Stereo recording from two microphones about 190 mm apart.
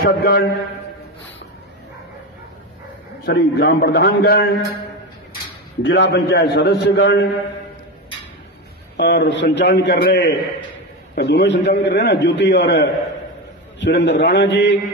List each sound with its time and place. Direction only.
0.0 s a man's voice: 55° left (ahead or behind)
3.3 s a man's voice: 60° left (ahead or behind)
5.8 s a man's voice: 65° left (ahead or behind)
8.9 s a man's voice: 65° left (ahead or behind)